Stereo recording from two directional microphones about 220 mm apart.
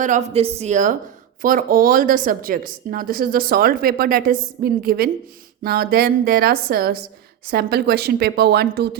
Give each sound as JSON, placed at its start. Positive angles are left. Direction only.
{"t": 0.0, "sound": "a woman's voice", "side_deg": -35}